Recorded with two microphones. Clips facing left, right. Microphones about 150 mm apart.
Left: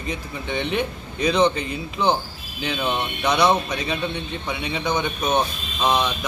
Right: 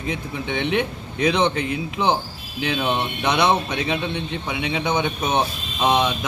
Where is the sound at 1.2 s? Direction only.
70° right (ahead or behind).